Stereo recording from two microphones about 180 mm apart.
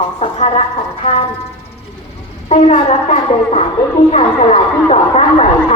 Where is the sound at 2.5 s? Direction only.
35° left (ahead or behind).